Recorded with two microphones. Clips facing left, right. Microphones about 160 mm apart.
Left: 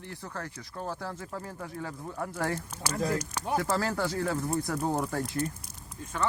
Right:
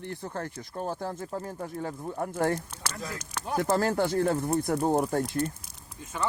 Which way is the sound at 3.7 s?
50° right (ahead or behind).